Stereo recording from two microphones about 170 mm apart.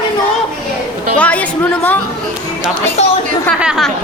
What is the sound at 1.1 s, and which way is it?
Speech, 10° left (ahead or behind).